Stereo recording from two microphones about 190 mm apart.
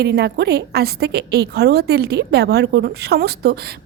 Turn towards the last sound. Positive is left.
turn(degrees=-55)  # may be behind; listen again after turning